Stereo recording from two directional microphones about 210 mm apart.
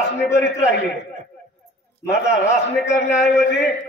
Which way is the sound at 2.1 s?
15° left (ahead or behind).